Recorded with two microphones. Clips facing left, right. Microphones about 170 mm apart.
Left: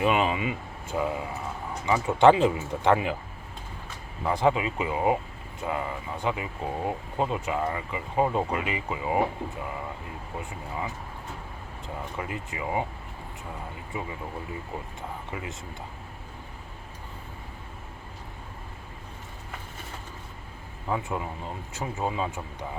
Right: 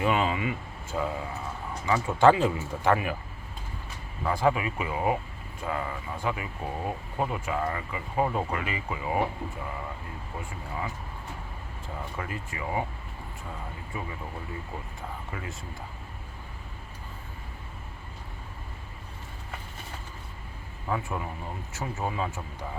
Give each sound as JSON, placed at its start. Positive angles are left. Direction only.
{"t": 0.0, "sound": "speech", "side_deg": 20}
{"t": 4.2, "sound": "speech", "side_deg": 20}
{"t": 12.1, "sound": "speech", "side_deg": 20}
{"t": 13.9, "sound": "speech", "side_deg": 20}
{"t": 15.3, "sound": "speech", "side_deg": 20}
{"t": 20.8, "sound": "speech", "side_deg": 20}